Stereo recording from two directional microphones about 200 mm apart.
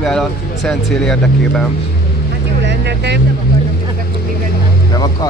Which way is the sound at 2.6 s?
60° right (ahead or behind).